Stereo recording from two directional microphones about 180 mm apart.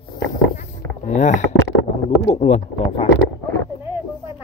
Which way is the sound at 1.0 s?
40° left (ahead or behind).